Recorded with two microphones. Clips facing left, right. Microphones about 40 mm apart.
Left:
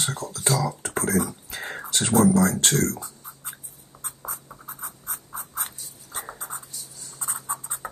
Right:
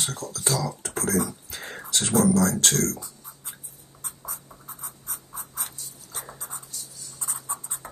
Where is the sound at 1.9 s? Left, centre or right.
Left.